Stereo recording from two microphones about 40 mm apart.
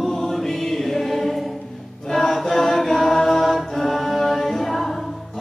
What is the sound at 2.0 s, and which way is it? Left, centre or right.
Choir, centre.